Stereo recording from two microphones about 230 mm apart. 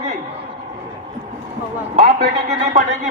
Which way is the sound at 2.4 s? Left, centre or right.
Right.